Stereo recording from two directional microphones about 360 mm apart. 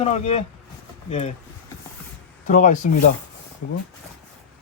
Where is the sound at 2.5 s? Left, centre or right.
Left.